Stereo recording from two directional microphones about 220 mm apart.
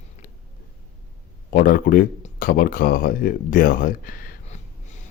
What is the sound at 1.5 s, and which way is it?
Speech, 40° left (ahead or behind).